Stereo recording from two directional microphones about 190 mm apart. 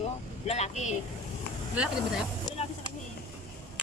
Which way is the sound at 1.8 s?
5° right (ahead or behind).